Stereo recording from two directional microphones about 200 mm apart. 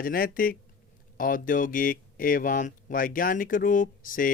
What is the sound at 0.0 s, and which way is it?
Speech, 45° left (ahead or behind).